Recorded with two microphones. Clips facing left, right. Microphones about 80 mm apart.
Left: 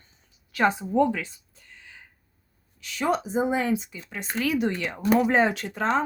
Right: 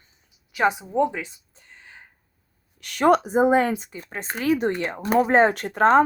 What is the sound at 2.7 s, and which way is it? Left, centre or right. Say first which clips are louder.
Speech: right 7 dB; right.